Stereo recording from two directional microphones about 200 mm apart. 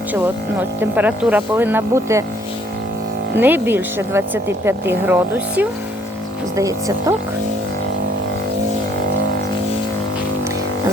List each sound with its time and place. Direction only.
0.8 s speech: 10° right (ahead or behind)
3.3 s speech: 10° right (ahead or behind)